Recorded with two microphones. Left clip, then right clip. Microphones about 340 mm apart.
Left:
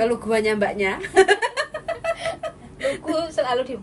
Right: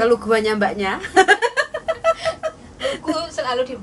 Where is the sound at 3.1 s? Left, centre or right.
Centre.